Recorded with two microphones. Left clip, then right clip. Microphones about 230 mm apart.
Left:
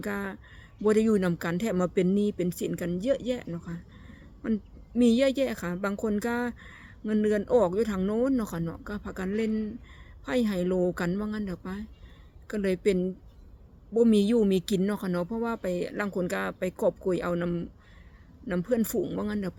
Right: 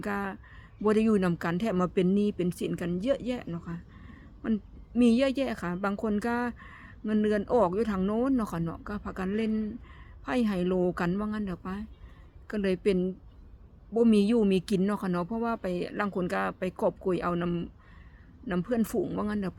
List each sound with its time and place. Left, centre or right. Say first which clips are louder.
0.0 s a woman's voice: right 1 dB; centre